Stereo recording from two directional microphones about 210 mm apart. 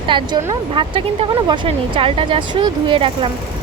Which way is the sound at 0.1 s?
20° right (ahead or behind).